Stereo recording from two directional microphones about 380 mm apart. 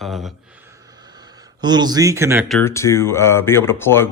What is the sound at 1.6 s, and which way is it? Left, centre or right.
Speech, centre.